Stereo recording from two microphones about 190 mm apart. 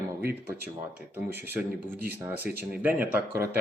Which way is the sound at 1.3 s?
10° right (ahead or behind).